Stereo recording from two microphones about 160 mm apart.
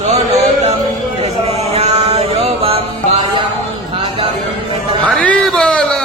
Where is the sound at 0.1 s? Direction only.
45° right (ahead or behind).